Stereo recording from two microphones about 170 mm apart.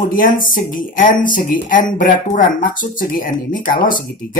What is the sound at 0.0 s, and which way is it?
Speech, 55° left (ahead or behind).